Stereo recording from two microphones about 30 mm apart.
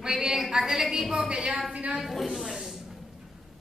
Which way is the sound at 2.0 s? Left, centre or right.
Centre.